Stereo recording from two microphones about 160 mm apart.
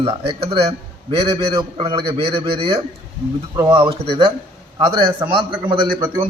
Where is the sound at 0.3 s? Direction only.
35° right (ahead or behind).